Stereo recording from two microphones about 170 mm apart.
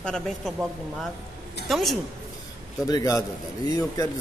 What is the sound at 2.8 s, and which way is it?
Speech, 20° left (ahead or behind).